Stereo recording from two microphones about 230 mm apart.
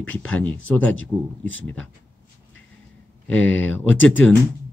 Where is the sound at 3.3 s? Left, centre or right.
Centre.